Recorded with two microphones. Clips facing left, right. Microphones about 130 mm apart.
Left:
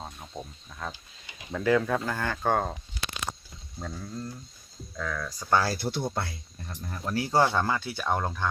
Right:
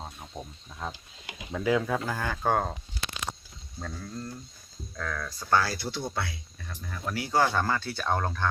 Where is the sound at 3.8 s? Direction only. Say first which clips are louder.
Left 1 dB; 10° left (ahead or behind).